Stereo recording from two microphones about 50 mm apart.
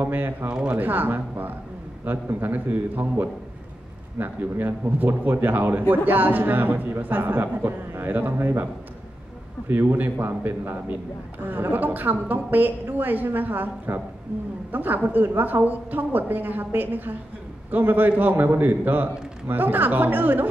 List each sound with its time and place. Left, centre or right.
0.0 s a man's voice: right
0.5 s speech: centre
0.7 s a man's voice: right
9.7 s a man's voice: right